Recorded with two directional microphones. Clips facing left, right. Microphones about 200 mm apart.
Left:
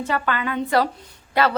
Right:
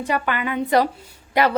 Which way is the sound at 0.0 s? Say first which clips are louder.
Right 1 dB; 15° right (ahead or behind).